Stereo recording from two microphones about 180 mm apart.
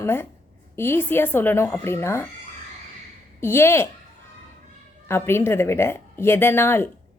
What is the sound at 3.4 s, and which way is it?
Speech, 15° left (ahead or behind).